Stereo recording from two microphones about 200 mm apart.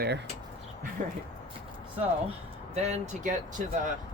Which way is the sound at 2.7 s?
35° right (ahead or behind).